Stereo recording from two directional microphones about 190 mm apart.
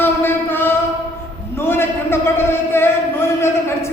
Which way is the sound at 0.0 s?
10° left (ahead or behind).